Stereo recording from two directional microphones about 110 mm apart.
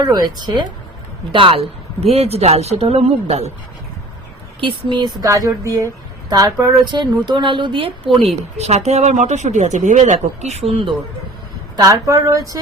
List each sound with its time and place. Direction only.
0.0 s speech: 40° right (ahead or behind)
1.3 s a woman's voice: 50° right (ahead or behind)
2.0 s speech: 65° right (ahead or behind); by 3.5 s 85° right
4.6 s a woman's voice: 45° right (ahead or behind)
8.5 s speech: 80° right
10.7 s a woman's voice: 55° right (ahead or behind)
11.8 s speech: 30° right (ahead or behind)